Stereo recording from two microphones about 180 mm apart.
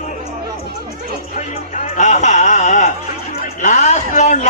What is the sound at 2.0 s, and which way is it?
A man's voice, 40° left (ahead or behind).